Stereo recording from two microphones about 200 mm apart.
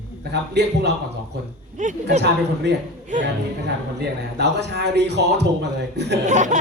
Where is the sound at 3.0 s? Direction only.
40° right (ahead or behind).